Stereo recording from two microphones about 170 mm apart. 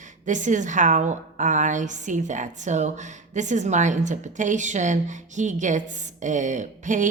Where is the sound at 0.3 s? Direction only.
45° right (ahead or behind).